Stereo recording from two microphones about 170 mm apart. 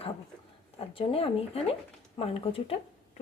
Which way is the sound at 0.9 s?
35° left (ahead or behind).